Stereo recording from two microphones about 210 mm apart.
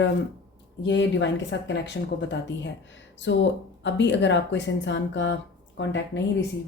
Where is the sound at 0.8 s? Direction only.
60° left (ahead or behind).